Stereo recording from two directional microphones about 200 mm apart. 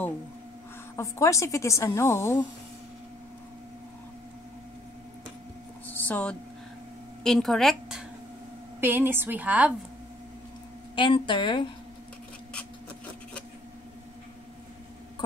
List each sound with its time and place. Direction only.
0.9 s a woman's voice: 15° left (ahead or behind)
5.9 s a sound: 10° left (ahead or behind)
7.2 s a woman's voice: centre (ahead or behind)
8.8 s a woman's voice: 10° right (ahead or behind)
11.0 s a woman's voice: 25° left (ahead or behind)